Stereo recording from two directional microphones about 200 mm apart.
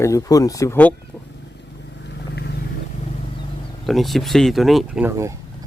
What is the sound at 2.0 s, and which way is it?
Vehicle, 55° left (ahead or behind).